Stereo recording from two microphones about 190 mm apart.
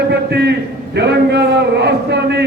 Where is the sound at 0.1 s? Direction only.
60° right (ahead or behind).